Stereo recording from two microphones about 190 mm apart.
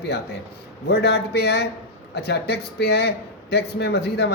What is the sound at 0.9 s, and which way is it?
Speech, 60° left (ahead or behind).